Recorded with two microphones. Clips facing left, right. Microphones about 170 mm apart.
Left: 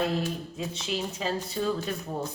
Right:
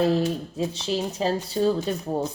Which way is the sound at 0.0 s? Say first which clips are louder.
Right 7 dB; 35° right (ahead or behind).